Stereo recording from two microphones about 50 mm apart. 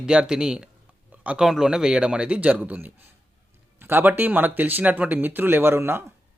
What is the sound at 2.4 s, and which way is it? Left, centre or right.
Speech, right.